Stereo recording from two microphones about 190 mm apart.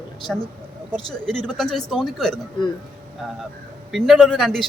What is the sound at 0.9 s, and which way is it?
Speech, 5° left (ahead or behind).